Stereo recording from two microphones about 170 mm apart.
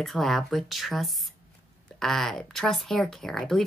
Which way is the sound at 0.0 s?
Centre (ahead or behind).